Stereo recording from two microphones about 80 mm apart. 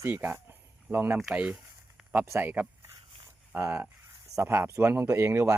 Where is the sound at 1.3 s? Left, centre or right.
Centre.